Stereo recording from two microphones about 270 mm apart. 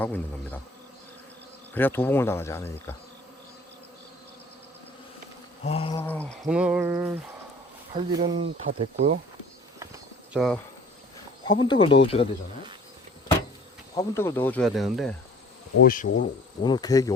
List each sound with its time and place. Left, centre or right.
0.0 s speech: centre
1.7 s speech: centre
5.6 s speech: left
6.0 s a sound: centre
7.9 s speech: centre
10.3 s a sound: centre
11.4 s speech: centre
13.9 s speech: centre
15.8 s speech: left
16.6 s speech: centre